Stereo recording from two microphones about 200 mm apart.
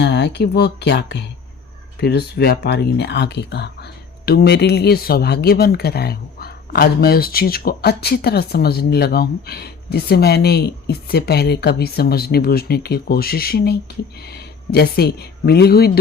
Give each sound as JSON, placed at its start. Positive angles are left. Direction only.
{"t": 0.0, "sound": "speech", "side_deg": 55}